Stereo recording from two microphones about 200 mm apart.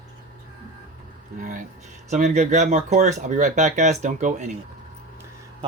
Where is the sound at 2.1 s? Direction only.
35° right (ahead or behind).